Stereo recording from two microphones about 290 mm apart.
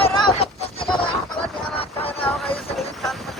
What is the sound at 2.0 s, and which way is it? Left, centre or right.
Music, centre.